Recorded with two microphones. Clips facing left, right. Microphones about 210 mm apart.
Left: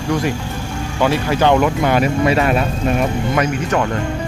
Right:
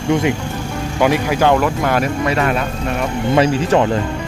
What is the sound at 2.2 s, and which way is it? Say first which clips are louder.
Speech: left 2 dB; 20° left (ahead or behind).